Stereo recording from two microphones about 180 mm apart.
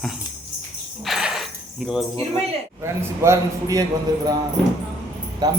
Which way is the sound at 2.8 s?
15° right (ahead or behind).